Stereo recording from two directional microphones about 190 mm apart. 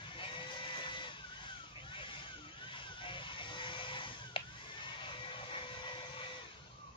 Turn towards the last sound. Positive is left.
turn(degrees=25)  # may be behind; listen again after turning